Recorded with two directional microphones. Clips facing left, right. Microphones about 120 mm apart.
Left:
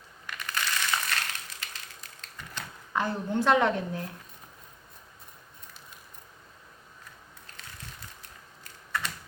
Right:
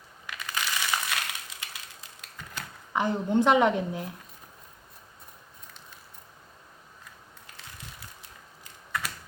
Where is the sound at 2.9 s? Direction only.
15° right (ahead or behind).